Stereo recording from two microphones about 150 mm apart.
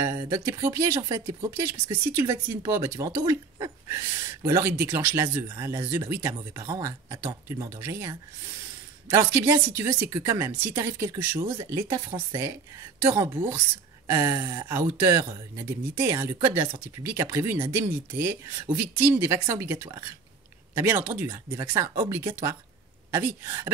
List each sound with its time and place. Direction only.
0.0 s speech: 20° right (ahead or behind)
21.3 s speech: 20° right (ahead or behind)